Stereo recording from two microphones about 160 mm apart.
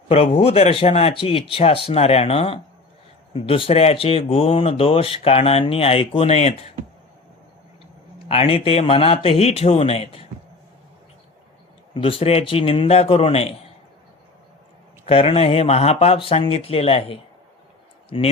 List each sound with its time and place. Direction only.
0.1 s speech: 40° left (ahead or behind)
8.3 s speech: 35° left (ahead or behind)
11.9 s speech: 35° left (ahead or behind)
15.0 s speech: 35° left (ahead or behind)